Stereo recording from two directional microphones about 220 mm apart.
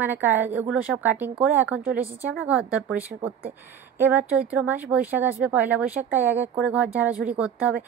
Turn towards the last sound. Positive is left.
turn(degrees=-5)  # may be behind; listen again after turning